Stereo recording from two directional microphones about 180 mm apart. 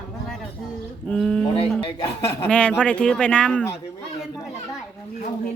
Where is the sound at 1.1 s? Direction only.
5° left (ahead or behind).